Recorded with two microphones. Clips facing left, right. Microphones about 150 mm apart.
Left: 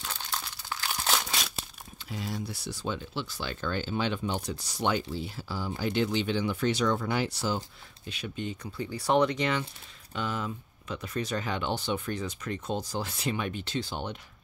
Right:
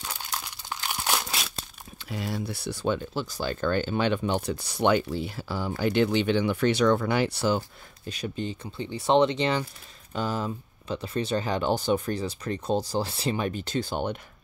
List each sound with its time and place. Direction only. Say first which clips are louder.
0.0 s crumpling: right 1 dB; 10° right (ahead or behind)
2.0 s speech: right 4 dB; 70° right (ahead or behind)
8.0 s speech: right 4 dB; 40° right (ahead or behind)